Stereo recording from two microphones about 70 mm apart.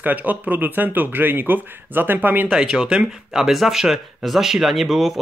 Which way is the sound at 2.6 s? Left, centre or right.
Centre.